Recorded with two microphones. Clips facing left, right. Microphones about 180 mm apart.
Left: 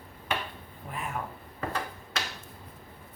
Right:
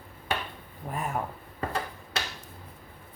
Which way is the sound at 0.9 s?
45° right (ahead or behind).